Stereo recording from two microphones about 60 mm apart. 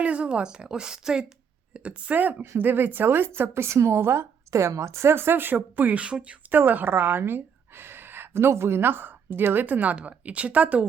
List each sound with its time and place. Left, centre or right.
0.0 s a woman's voice: centre
1.7 s a woman's voice: right
6.5 s a woman's voice: right